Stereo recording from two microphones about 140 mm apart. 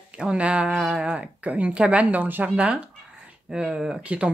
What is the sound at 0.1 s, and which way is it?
Speech, 5° right (ahead or behind).